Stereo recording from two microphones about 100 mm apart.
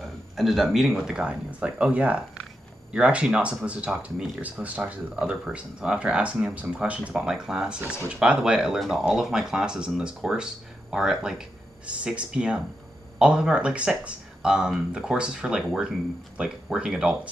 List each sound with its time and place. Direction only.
0.0 s a man's voice: centre (ahead or behind)
1.1 s speech: 10° right (ahead or behind)